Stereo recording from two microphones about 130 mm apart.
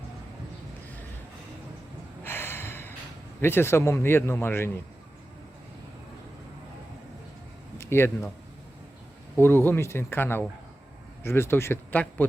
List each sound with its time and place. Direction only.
2.2 s gasp: 15° left (ahead or behind)
3.4 s speech: 20° left (ahead or behind)
7.8 s speech: 20° left (ahead or behind)
9.4 s speech: 15° left (ahead or behind)